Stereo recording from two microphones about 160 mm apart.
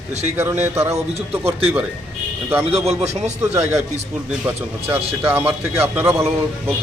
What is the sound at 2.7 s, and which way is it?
Speech, 40° right (ahead or behind).